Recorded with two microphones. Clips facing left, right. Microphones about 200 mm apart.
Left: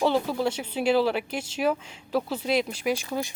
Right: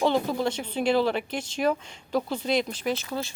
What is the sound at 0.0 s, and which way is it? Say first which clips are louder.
Speech: even; 5° left (ahead or behind).